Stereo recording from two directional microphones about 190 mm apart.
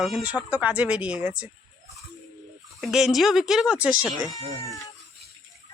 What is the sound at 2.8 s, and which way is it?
Speech, centre (ahead or behind).